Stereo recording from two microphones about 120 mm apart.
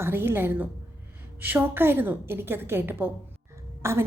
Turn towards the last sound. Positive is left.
turn(degrees=-20)  # may be behind; listen again after turning